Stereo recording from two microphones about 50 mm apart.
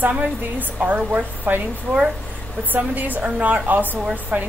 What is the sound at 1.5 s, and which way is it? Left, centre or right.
Speech, right.